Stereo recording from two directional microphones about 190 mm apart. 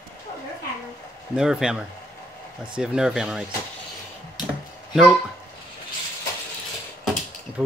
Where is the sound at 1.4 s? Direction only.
5° right (ahead or behind).